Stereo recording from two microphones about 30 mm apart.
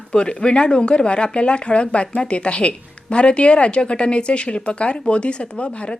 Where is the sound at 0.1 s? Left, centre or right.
Left.